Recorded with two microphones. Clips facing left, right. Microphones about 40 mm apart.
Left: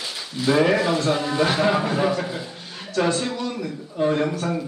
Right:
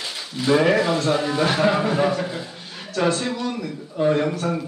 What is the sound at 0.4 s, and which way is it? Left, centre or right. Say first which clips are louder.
Speech: right 1 dB; centre.